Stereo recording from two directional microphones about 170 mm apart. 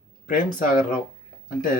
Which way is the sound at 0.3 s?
55° left (ahead or behind).